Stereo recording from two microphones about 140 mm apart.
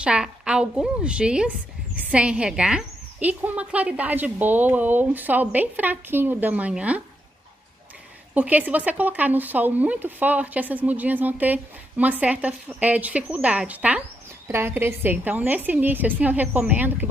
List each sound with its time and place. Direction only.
0.0 s speech: 5° right (ahead or behind)
8.4 s speech: 10° right (ahead or behind)